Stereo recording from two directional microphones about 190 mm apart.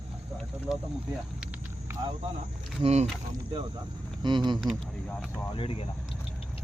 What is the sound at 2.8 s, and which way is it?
Speech, 35° right (ahead or behind).